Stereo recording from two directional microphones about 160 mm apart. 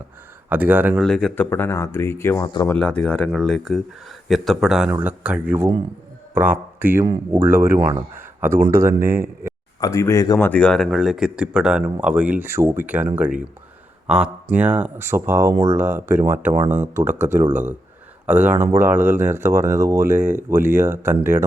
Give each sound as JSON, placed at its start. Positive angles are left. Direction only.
{"t": 0.5, "sound": "speech", "side_deg": -10}
{"t": 1.0, "sound": "speech", "side_deg": 5}
{"t": 1.5, "sound": "speech", "side_deg": 15}
{"t": 4.9, "sound": "speech", "side_deg": -10}
{"t": 9.8, "sound": "speech", "side_deg": 20}